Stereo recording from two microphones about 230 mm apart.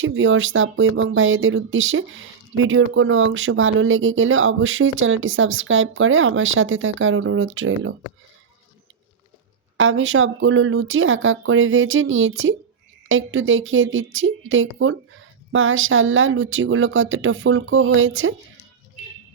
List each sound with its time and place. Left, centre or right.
0.0 s speech: right
9.7 s speech: right